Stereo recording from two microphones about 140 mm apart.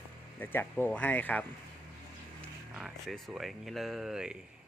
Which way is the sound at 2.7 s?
Centre (ahead or behind).